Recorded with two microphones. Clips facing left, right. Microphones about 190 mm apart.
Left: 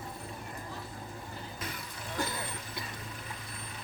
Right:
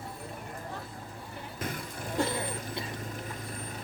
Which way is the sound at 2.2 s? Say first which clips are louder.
Right 6 dB; 30° right (ahead or behind).